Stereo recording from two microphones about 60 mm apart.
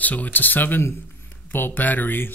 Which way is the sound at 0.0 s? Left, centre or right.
Left.